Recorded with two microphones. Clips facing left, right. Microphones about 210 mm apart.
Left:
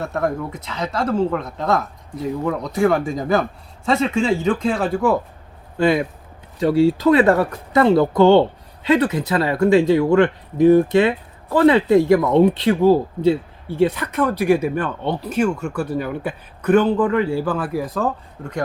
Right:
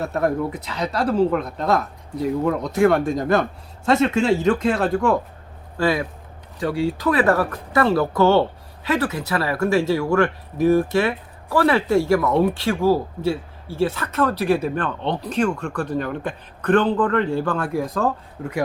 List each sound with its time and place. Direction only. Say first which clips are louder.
0.0 s speech: right 1 dB; centre (ahead or behind)
5.7 s speech: left 4 dB; 20° left (ahead or behind); by 18.6 s centre (ahead or behind)